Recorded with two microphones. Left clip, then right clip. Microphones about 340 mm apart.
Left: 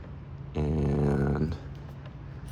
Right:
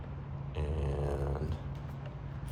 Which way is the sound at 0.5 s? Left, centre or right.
Left.